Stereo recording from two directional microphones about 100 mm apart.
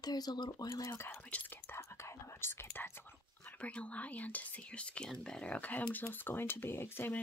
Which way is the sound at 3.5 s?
15° left (ahead or behind).